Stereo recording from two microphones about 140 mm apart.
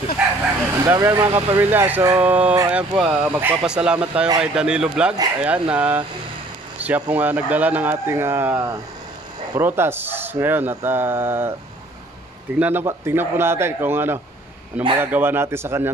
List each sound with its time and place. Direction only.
0.2 s bow-wow: 5° right (ahead or behind)
0.7 s speech: 20° right (ahead or behind)
12.5 s speech: 15° right (ahead or behind)